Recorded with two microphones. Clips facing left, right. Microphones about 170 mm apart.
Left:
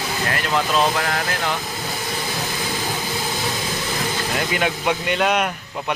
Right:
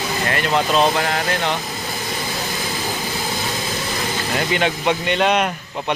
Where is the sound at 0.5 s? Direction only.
30° right (ahead or behind).